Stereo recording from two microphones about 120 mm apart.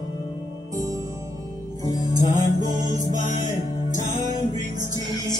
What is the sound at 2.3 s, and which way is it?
Music, 90° left.